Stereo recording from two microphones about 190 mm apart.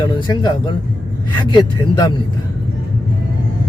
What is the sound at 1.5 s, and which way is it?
Speech, 20° left (ahead or behind).